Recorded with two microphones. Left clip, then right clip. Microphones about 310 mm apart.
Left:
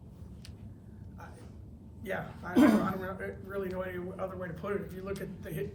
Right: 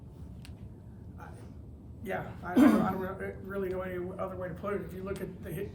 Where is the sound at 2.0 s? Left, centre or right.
Centre.